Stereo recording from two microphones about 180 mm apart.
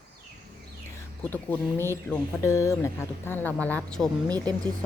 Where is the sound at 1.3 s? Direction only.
10° left (ahead or behind).